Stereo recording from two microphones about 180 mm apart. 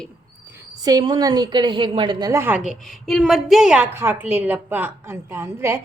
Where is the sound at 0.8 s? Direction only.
20° right (ahead or behind).